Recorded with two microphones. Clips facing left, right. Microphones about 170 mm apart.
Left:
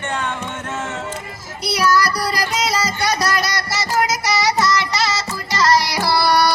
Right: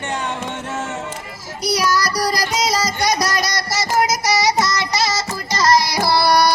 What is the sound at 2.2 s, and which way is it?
Music, 40° right (ahead or behind).